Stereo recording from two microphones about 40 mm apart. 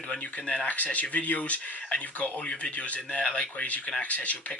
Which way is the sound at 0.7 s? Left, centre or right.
Left.